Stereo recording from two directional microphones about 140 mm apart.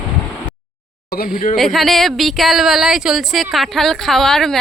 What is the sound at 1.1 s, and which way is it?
Speech, 85° left.